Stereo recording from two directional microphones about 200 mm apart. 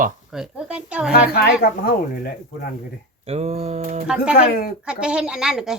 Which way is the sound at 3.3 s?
30° right (ahead or behind).